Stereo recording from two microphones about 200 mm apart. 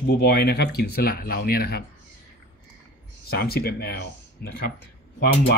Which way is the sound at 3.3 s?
50° left (ahead or behind).